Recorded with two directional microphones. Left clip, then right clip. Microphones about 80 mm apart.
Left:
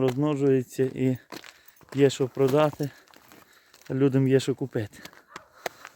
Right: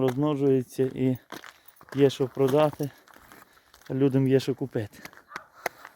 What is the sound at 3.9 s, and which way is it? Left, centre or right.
Speech, centre.